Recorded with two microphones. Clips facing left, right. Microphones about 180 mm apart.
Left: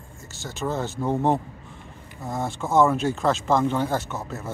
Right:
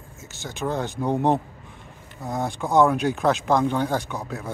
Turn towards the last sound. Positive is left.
turn(degrees=5)  # may be behind; listen again after turning